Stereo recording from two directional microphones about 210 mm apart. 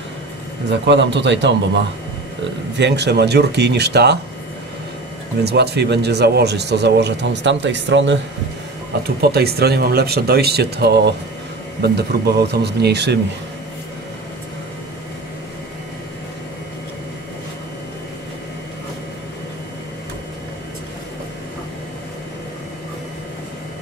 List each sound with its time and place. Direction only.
0.7 s a man's voice: 55° right (ahead or behind)
2.8 s speech: 55° right (ahead or behind)
5.4 s speech: 50° right (ahead or behind)
9.2 s speech: 50° right (ahead or behind)